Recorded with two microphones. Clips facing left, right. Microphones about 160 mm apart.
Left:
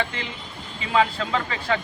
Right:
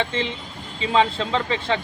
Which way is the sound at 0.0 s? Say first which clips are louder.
Right 4 dB; 25° right (ahead or behind).